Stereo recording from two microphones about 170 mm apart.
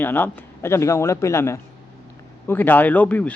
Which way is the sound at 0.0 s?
10° left (ahead or behind).